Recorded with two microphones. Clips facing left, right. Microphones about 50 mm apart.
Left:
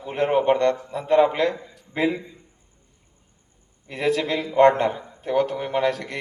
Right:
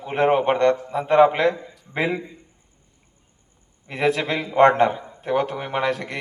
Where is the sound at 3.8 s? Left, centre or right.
Right.